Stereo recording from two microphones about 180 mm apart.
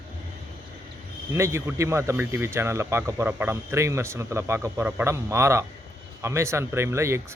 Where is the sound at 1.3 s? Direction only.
15° right (ahead or behind).